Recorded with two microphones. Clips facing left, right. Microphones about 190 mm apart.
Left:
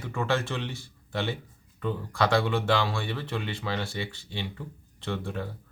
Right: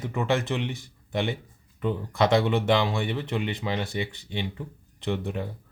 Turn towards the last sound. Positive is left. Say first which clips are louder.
# right 3 dB
turn(degrees=-15)  # may be behind; listen again after turning